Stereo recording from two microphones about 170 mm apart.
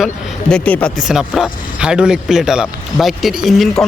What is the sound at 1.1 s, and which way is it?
A man's voice, 5° right (ahead or behind).